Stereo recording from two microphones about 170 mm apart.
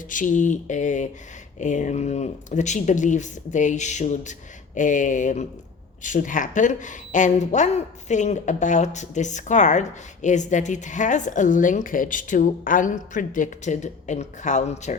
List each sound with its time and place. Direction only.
0.1 s a woman's voice: 50° left (ahead or behind)